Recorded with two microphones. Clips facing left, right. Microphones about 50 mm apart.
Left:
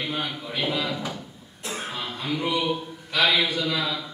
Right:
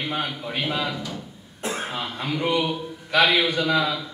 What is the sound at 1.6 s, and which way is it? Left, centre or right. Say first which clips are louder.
Cough: right 3 dB; right.